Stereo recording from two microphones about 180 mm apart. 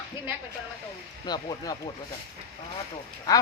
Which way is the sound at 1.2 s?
20° left (ahead or behind).